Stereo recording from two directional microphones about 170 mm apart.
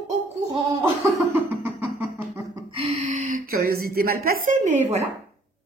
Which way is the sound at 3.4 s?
60° right (ahead or behind).